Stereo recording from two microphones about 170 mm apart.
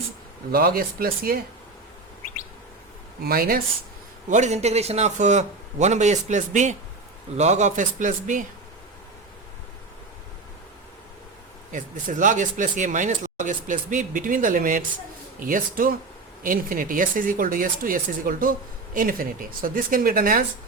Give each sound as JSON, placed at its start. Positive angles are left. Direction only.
{"t": 0.5, "sound": "speech", "side_deg": -60}
{"t": 3.2, "sound": "speech", "side_deg": -60}
{"t": 4.3, "sound": "speech", "side_deg": -45}
{"t": 11.7, "sound": "speech", "side_deg": -50}